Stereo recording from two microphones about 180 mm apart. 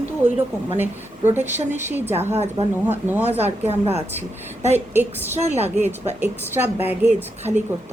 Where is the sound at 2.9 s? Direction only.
10° right (ahead or behind).